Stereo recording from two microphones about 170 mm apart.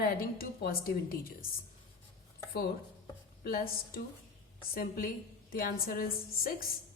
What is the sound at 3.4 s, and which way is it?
Speech, 60° left (ahead or behind).